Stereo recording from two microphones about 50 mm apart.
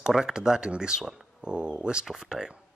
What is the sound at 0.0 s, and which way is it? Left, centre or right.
Speech, centre.